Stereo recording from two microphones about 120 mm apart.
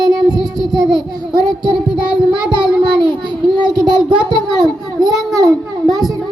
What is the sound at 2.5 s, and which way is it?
Child singing, 40° right (ahead or behind).